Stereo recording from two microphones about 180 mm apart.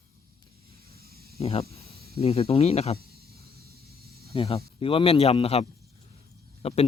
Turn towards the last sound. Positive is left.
turn(degrees=35)  # may be behind; listen again after turning